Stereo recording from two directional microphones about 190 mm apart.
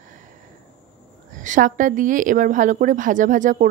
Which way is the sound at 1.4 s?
45° right (ahead or behind).